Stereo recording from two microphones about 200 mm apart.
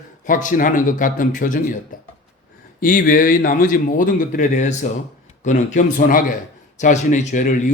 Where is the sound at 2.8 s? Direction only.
40° left (ahead or behind).